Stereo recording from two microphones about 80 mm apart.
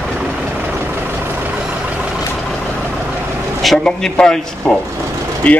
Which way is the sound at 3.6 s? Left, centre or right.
Centre.